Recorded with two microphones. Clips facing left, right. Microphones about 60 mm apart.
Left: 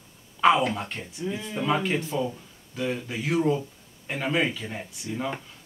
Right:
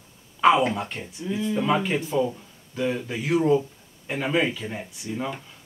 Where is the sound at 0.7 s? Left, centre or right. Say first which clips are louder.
Right 2 dB; centre.